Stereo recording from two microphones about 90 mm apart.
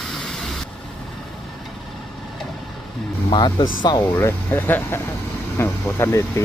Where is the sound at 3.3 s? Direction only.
55° left (ahead or behind).